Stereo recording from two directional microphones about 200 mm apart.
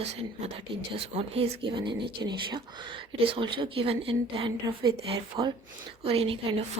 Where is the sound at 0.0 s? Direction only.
30° right (ahead or behind).